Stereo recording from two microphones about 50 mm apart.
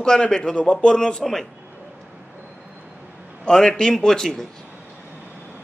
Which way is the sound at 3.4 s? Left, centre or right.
Centre.